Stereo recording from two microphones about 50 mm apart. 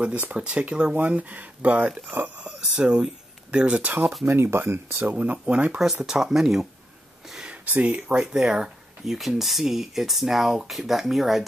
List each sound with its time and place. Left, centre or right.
0.0 s speech: right
0.9 s speech: right
2.8 s speech: centre
4.3 s speech: right
5.0 s speech: right
5.8 s speech: centre
7.6 s speech: right; by 8.6 s centre
9.0 s speech: centre